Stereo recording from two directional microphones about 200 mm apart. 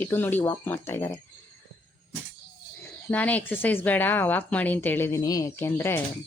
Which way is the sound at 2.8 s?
10° left (ahead or behind).